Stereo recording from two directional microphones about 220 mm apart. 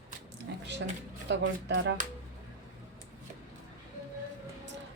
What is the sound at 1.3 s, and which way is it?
Speech, 55° right (ahead or behind).